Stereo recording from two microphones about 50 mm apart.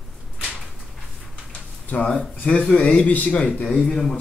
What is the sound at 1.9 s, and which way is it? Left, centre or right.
A man's voice, centre.